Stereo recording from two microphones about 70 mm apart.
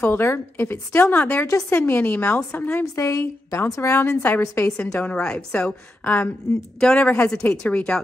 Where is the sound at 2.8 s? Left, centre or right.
Left.